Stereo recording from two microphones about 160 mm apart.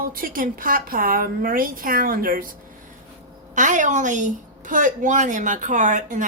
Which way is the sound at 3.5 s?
55° right (ahead or behind).